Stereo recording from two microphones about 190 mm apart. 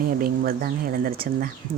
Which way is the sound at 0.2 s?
50° right (ahead or behind).